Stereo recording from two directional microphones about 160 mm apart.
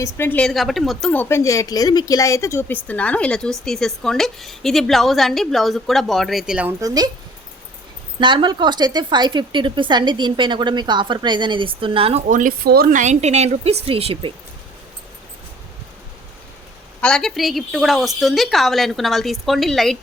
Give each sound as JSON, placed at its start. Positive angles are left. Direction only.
{"t": 0.0, "sound": "speech", "side_deg": 10}
{"t": 6.7, "sound": "a woman's voice", "side_deg": -25}
{"t": 8.2, "sound": "a woman's voice", "side_deg": -30}
{"t": 12.3, "sound": "speech", "side_deg": -60}
{"t": 17.0, "sound": "speech", "side_deg": 5}